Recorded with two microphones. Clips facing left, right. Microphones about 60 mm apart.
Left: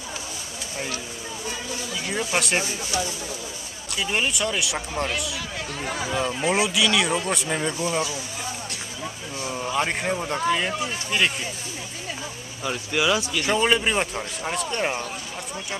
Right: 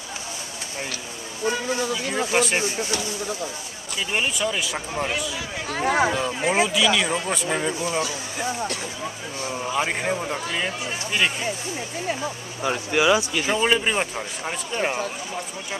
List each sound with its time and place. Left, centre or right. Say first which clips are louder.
1.7 s speech: right 6 dB; right
2.3 s speech: right 2 dB; centre
3.9 s speech: even; centre
5.7 s speech: right 10 dB; right
6.4 s speech: right 3 dB; centre
9.5 s speech: even; centre
12.6 s speech: right 3 dB; centre
13.4 s speech: even; centre